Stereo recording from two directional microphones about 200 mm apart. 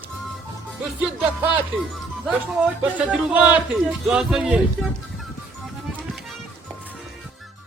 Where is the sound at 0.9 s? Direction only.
5° right (ahead or behind).